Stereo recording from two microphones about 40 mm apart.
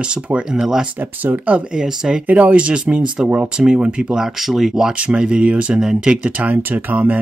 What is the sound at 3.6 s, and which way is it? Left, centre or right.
Speech, right.